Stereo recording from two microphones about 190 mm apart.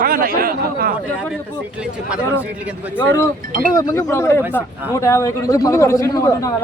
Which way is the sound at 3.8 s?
20° left (ahead or behind).